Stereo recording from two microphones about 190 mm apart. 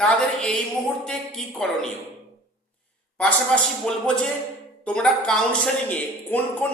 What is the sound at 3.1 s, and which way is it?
Speech, 5° left (ahead or behind).